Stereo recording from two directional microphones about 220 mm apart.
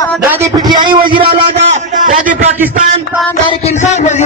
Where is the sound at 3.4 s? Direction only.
30° left (ahead or behind).